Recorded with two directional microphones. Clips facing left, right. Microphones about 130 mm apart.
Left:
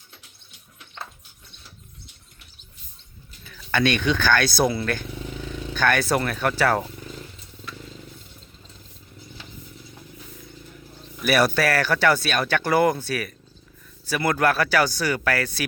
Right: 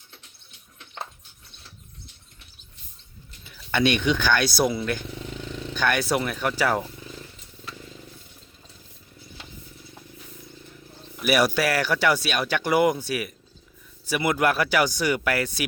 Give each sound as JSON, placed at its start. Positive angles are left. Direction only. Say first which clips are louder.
{"t": 3.4, "sound": "speech", "louder": "even", "side_deg": -20}
{"t": 4.6, "sound": "speech", "louder": "left 1 dB", "side_deg": 5}
{"t": 5.7, "sound": "speech", "louder": "left 2 dB", "side_deg": -15}
{"t": 11.2, "sound": "speech", "louder": "left 1 dB", "side_deg": -10}